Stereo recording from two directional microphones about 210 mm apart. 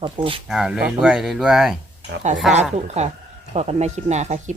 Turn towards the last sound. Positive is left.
turn(degrees=-35)  # may be behind; listen again after turning